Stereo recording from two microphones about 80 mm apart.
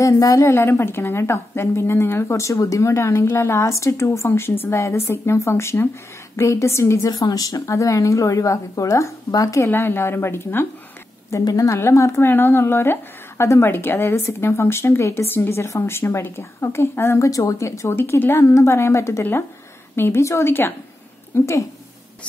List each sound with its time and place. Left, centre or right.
0.0 s speech: left
0.6 s speech: left
7.2 s speech: left
9.6 s speech: left
11.4 s speech: left
17.3 s speech: left